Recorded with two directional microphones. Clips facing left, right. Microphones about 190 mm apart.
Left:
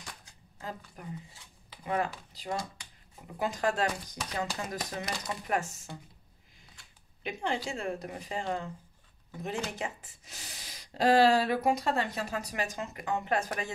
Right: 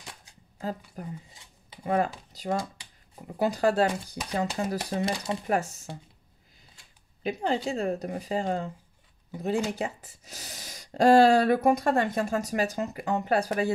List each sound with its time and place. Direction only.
1.0 s speech: 35° right (ahead or behind)
7.2 s speech: 35° right (ahead or behind)